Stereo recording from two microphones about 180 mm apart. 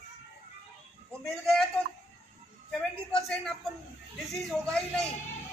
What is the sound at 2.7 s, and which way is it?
A man's voice, centre (ahead or behind).